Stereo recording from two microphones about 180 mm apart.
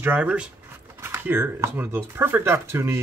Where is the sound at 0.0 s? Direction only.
10° right (ahead or behind).